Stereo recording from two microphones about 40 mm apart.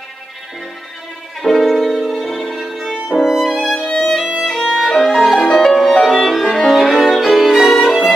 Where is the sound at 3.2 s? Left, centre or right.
Centre.